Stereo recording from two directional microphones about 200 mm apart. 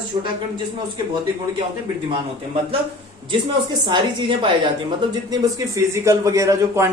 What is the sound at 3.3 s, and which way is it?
Speech, 20° right (ahead or behind).